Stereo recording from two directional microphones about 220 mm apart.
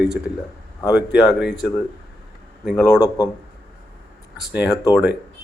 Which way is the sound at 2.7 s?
15° left (ahead or behind).